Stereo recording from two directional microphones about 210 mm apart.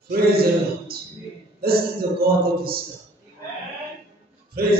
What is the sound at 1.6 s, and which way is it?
Music, 45° right (ahead or behind).